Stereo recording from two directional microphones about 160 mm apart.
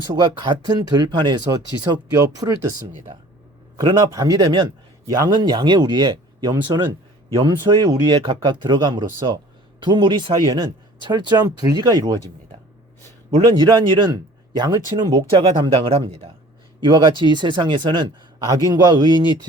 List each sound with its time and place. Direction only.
0.1 s speech: 30° right (ahead or behind)
13.3 s speech: 30° right (ahead or behind)